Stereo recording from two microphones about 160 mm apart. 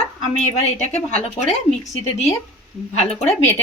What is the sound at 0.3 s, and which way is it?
A woman's voice, 45° left (ahead or behind).